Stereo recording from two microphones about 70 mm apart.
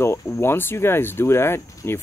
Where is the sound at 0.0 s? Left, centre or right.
Left.